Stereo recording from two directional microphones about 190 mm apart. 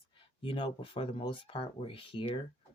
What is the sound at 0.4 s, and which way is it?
Speech, 25° left (ahead or behind).